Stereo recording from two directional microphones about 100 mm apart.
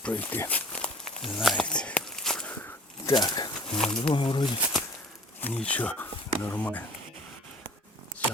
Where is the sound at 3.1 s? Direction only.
45° left (ahead or behind).